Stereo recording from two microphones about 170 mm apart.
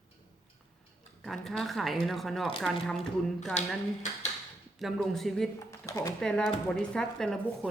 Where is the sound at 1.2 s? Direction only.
Centre (ahead or behind).